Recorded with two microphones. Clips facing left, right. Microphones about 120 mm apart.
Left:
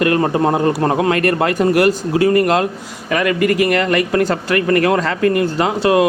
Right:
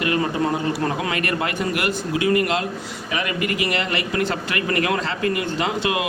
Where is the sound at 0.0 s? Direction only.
55° left (ahead or behind).